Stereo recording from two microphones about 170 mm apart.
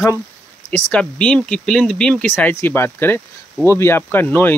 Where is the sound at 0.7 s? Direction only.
5° left (ahead or behind).